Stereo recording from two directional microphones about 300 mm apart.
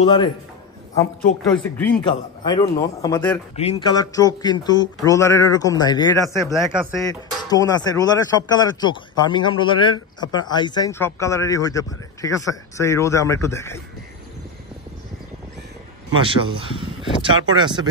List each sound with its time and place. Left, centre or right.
0.0 s speech: centre
6.2 s speech: centre
7.4 s speech: centre
16.2 s speech: centre